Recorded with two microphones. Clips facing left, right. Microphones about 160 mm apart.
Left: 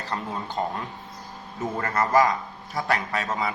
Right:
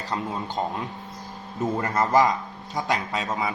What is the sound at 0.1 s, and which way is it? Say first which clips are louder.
Speech: right 2 dB; 10° right (ahead or behind).